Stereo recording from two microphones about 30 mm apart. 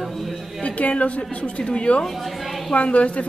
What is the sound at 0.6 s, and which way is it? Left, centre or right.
Speech, left.